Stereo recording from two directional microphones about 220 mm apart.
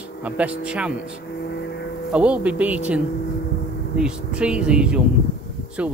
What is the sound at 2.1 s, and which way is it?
Speech, 5° right (ahead or behind).